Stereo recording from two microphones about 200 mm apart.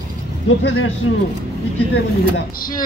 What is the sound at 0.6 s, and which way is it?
Speech, 75° left (ahead or behind).